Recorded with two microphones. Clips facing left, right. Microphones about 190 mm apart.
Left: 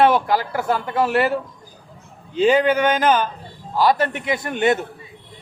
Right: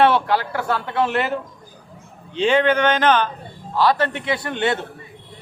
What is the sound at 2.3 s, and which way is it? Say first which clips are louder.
Speech: left 1 dB; 5° left (ahead or behind).